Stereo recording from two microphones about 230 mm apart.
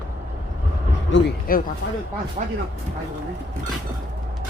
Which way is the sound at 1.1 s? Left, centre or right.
Left.